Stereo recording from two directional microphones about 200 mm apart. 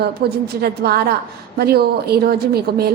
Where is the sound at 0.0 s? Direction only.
50° right (ahead or behind).